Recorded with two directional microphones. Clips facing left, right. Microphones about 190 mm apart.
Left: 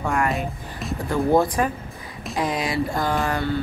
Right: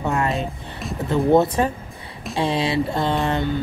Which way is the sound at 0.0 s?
25° right (ahead or behind).